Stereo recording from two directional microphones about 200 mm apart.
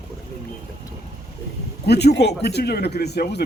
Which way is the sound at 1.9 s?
55° left (ahead or behind).